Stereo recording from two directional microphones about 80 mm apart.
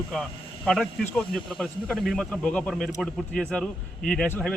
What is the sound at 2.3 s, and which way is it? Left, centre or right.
Speech, centre.